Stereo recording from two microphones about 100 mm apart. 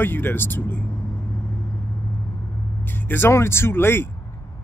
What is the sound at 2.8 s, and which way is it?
Speech, 20° left (ahead or behind).